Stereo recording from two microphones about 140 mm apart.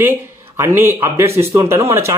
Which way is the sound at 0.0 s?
15° right (ahead or behind).